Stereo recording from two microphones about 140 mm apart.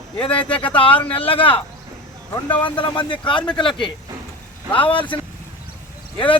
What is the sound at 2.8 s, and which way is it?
Speech, 35° left (ahead or behind).